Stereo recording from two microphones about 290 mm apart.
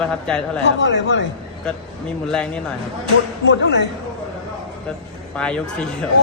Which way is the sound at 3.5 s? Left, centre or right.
Left.